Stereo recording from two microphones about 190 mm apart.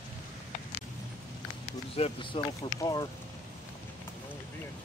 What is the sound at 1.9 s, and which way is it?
Speech, 30° left (ahead or behind).